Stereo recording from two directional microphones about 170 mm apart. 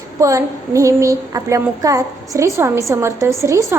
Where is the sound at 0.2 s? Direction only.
20° right (ahead or behind).